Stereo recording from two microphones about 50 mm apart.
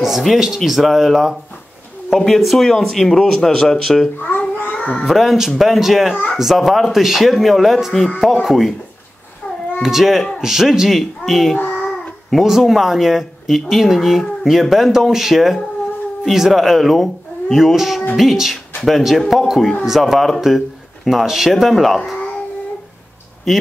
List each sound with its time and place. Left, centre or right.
0.0 s a man's voice: centre
4.3 s babbling: left
4.7 s cat: centre
5.0 s speech: centre
9.8 s a man's voice: centre
11.5 s child singing: left
11.8 s a woman's voice: centre